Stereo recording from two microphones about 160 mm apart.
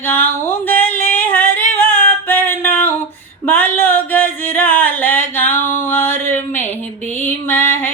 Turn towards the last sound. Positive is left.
turn(degrees=15)  # may be behind; listen again after turning